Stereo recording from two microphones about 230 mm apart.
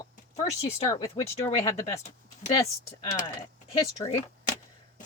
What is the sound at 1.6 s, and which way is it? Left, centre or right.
Speech, centre.